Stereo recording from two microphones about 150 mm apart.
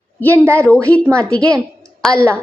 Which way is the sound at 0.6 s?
10° left (ahead or behind).